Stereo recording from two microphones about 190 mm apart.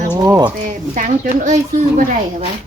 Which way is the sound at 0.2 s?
20° right (ahead or behind).